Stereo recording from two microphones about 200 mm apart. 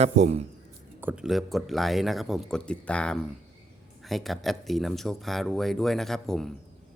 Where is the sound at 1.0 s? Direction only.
5° right (ahead or behind).